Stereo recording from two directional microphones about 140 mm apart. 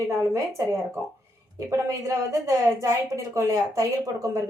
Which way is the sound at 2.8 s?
20° right (ahead or behind).